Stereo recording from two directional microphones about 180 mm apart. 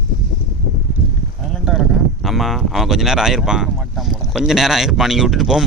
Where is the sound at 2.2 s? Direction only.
Centre (ahead or behind).